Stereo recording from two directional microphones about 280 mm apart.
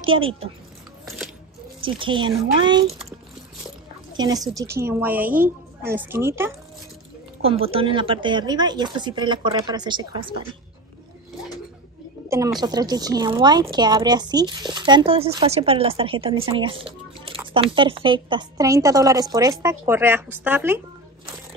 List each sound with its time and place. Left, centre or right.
0.0 s a child's voice: centre
1.0 s biting: centre
1.8 s speech: centre
4.1 s a sound: centre
4.8 s speech: centre
7.4 s speech: right
12.3 s speech: centre